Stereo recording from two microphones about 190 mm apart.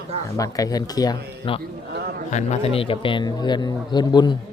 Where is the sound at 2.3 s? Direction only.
35° left (ahead or behind); by 4.3 s 20° left (ahead or behind).